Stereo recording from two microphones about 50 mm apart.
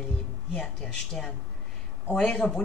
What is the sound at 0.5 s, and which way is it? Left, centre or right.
Speech, centre.